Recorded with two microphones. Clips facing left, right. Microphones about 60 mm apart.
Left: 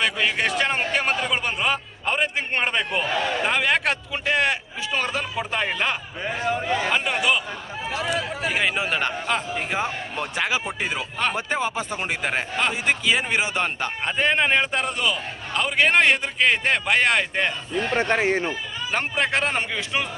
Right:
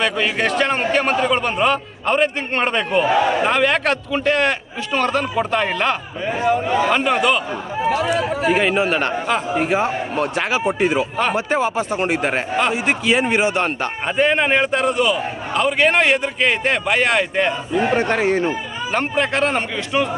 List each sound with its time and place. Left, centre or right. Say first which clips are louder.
0.0 s a man's voice: right 4 dB; centre
3.0 s a man's voice: right 8 dB; centre
3.4 s a man's voice: right 5 dB; centre
6.4 s a man's voice: right 7 dB; right
6.9 s a man's voice: right 5 dB; centre
17.7 s a man's voice: right 5 dB; centre
18.2 s speech: right 4 dB; left
18.9 s a man's voice: right 4 dB; centre